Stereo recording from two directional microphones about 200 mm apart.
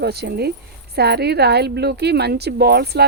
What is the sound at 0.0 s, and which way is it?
Speech, 55° right (ahead or behind).